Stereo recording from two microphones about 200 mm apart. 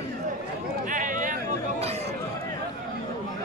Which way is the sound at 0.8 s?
40° right (ahead or behind).